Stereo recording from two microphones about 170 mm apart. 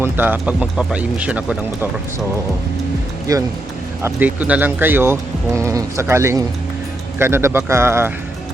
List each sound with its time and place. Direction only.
0.0 s speech: 10° right (ahead or behind)
3.3 s speech: 20° right (ahead or behind)
4.0 s speech: 10° right (ahead or behind)